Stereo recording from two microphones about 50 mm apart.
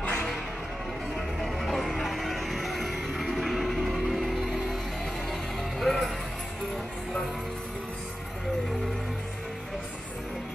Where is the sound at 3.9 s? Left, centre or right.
Centre.